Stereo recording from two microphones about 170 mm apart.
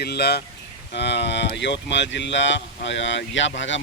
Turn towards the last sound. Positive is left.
turn(degrees=90)